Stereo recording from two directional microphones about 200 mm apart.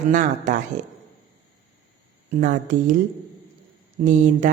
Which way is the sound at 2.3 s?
40° right (ahead or behind).